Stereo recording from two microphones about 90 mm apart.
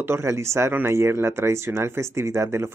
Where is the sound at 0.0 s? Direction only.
30° right (ahead or behind).